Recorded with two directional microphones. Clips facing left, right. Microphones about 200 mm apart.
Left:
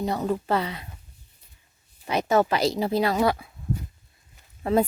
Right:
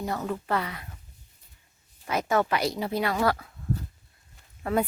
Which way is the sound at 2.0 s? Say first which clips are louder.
Left 4 dB; 20° left (ahead or behind).